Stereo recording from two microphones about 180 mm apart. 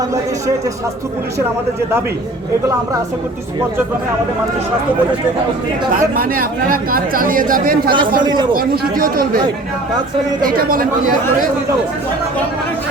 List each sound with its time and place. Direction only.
6.0 s speech: 50° right (ahead or behind)
8.2 s a man's voice: 25° right (ahead or behind)
8.5 s speech: 55° right (ahead or behind)
10.4 s speech: 55° right (ahead or behind)